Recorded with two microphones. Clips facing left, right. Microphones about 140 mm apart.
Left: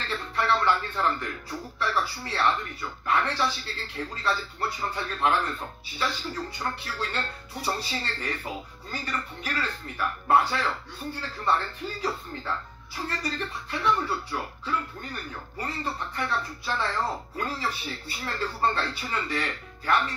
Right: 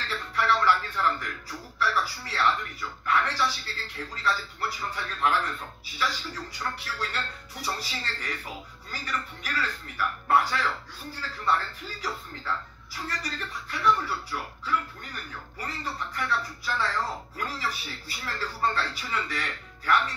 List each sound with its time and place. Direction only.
0.3 s speech: 30° left (ahead or behind)